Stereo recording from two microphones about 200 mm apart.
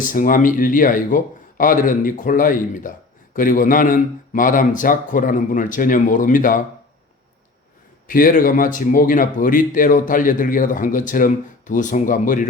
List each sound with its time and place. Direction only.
0.0 s speech: 40° left (ahead or behind)
8.0 s speech: 45° left (ahead or behind)